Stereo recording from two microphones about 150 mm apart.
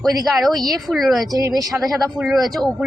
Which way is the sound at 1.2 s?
25° right (ahead or behind).